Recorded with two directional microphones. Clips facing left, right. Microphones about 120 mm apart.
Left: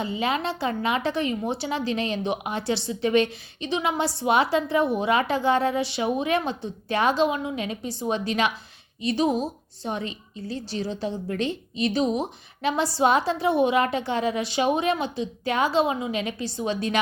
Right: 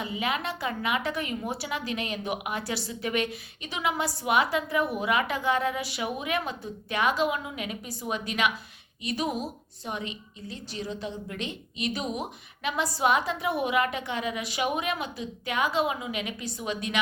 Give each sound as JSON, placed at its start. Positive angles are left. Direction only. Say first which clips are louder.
{"t": 0.0, "sound": "a woman's voice", "louder": "left 4 dB", "side_deg": 30}